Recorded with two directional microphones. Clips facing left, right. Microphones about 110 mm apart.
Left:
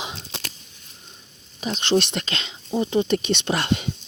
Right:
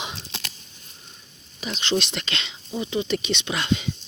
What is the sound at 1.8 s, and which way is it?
Speech, 50° left (ahead or behind).